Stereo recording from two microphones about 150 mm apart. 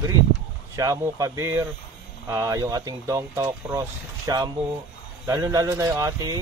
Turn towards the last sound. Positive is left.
turn(degrees=-25)  # may be behind; listen again after turning